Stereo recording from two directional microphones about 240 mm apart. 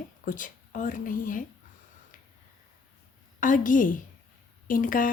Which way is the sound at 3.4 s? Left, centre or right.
Left.